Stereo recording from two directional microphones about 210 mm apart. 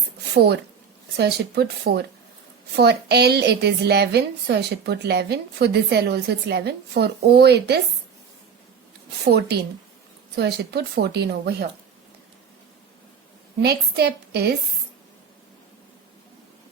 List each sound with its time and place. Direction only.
0.3 s a woman's voice: 50° right (ahead or behind)
9.2 s a woman's voice: 50° right (ahead or behind)
13.6 s a woman's voice: 50° right (ahead or behind)